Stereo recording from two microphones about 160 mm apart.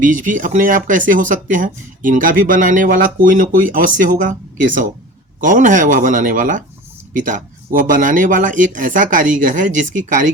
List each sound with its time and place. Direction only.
0.0 s speech: 55° right (ahead or behind)